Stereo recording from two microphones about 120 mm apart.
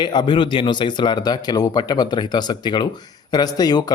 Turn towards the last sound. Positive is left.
turn(degrees=35)  # may be behind; listen again after turning